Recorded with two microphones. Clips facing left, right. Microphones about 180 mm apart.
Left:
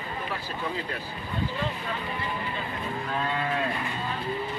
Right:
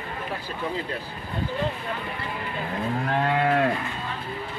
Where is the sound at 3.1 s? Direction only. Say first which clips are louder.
Right 7 dB; 65° right (ahead or behind).